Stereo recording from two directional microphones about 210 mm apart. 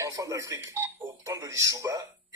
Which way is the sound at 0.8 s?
15° right (ahead or behind).